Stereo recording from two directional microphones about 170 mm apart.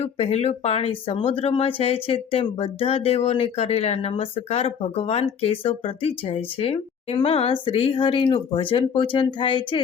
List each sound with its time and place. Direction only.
0.0 s speech: 40° left (ahead or behind)